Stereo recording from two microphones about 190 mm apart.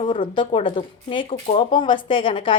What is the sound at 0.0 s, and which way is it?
Speech, 25° left (ahead or behind).